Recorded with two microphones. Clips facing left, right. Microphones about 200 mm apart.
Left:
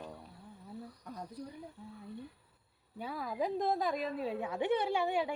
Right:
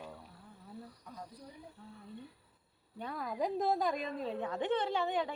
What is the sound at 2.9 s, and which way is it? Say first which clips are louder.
A woman's voice: left 1 dB; 5° left (ahead or behind).